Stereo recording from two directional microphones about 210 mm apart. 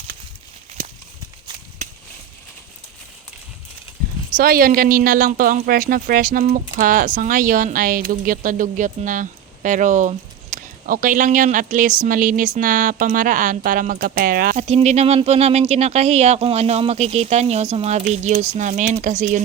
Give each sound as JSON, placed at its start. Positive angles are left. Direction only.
{"t": 0.8, "sound": "a sound", "side_deg": -40}
{"t": 4.3, "sound": "speech", "side_deg": -45}
{"t": 14.7, "sound": "speech", "side_deg": -30}